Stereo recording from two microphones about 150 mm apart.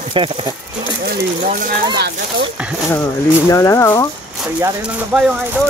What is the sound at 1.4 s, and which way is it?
Speech, 65° right (ahead or behind).